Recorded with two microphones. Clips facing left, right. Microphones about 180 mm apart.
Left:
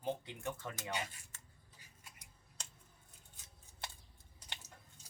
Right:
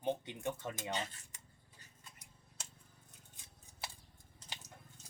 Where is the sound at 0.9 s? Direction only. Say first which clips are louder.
Even; 10° left (ahead or behind).